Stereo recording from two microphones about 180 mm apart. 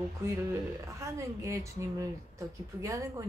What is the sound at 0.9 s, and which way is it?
Speech, 15° right (ahead or behind).